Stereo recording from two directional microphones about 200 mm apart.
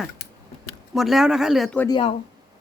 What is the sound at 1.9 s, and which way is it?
Speech, 25° left (ahead or behind).